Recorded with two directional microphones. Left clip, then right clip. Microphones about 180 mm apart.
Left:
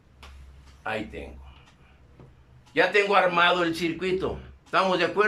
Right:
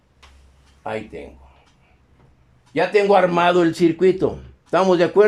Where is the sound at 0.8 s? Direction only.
30° right (ahead or behind).